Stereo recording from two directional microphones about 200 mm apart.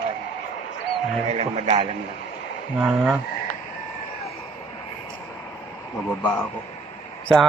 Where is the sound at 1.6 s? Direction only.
25° right (ahead or behind).